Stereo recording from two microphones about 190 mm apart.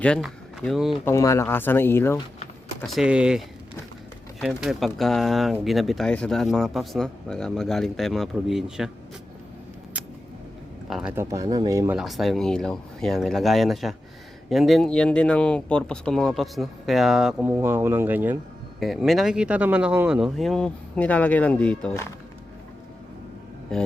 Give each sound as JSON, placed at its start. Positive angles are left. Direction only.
{"t": 0.0, "sound": "speech", "side_deg": 5}
{"t": 1.0, "sound": "speech", "side_deg": 15}
{"t": 2.8, "sound": "speech", "side_deg": 0}
{"t": 10.8, "sound": "speech", "side_deg": 0}
{"t": 11.1, "sound": "speech", "side_deg": -15}
{"t": 11.9, "sound": "speech", "side_deg": 0}